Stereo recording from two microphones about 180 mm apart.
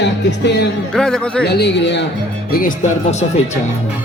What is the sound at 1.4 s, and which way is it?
Speech, 65° left (ahead or behind).